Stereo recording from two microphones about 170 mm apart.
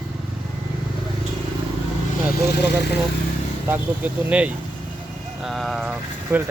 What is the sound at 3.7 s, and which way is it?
Speech, 10° right (ahead or behind).